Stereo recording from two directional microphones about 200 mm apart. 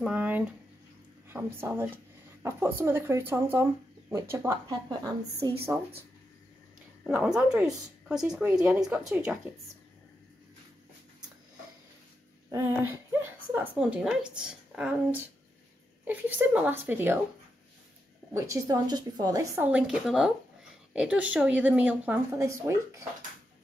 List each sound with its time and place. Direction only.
0.0 s a sound: 5° right (ahead or behind)
1.3 s speech: 10° right (ahead or behind)
7.1 s speech: 5° right (ahead or behind)
12.4 s a woman's voice: 10° right (ahead or behind)
18.3 s speech: 15° right (ahead or behind)